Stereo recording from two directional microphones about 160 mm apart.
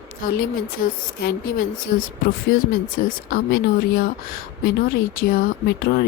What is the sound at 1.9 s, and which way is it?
Speech, 55° left (ahead or behind).